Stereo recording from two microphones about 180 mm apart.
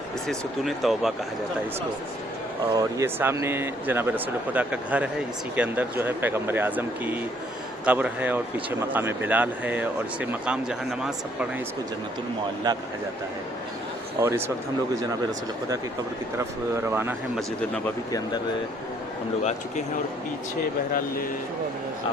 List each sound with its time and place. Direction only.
0.3 s speech: centre (ahead or behind)
2.7 s speech: 15° right (ahead or behind)
12.7 s speech: 20° right (ahead or behind)
14.2 s speech: 15° right (ahead or behind)
16.4 s speech: 10° right (ahead or behind)
17.8 s speech: 20° left (ahead or behind)
19.4 s speech: 40° left (ahead or behind)